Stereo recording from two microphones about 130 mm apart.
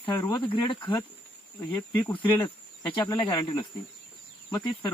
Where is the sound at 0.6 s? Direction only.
35° left (ahead or behind).